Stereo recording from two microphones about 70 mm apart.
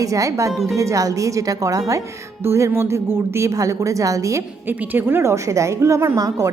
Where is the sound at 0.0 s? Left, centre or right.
Right.